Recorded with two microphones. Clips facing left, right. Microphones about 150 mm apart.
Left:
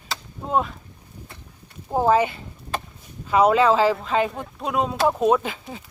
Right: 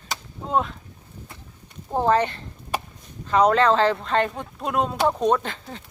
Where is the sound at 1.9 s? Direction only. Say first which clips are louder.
Left 2 dB; 5° left (ahead or behind).